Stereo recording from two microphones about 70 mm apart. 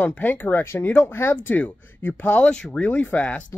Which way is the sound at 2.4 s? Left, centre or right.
Centre.